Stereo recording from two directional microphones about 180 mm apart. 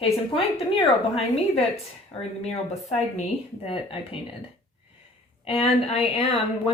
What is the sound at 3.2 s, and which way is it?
A woman's voice, 30° left (ahead or behind).